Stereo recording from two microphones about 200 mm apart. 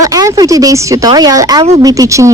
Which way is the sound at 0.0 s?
15° right (ahead or behind).